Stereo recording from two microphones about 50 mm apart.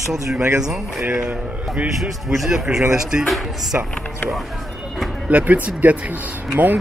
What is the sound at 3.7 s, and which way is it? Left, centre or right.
Speech, right.